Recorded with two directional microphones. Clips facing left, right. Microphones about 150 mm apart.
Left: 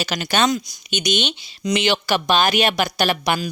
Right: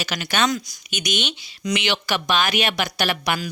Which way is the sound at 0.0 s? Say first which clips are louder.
Left 3 dB; 30° left (ahead or behind).